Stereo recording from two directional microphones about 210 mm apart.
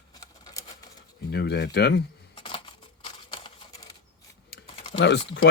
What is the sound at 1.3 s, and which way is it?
Speech, 50° left (ahead or behind).